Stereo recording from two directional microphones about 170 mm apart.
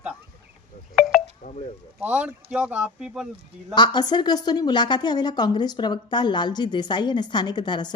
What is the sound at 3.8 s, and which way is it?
A woman's voice, 25° left (ahead or behind).